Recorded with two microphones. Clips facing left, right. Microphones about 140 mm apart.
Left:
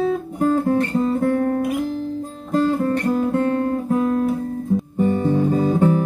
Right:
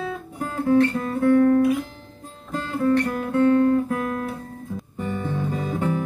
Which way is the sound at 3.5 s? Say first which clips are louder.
Right 1 dB; 25° left (ahead or behind).